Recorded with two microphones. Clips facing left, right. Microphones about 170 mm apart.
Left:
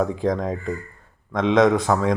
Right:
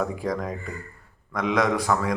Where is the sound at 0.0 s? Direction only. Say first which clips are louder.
Left 5 dB; 20° left (ahead or behind).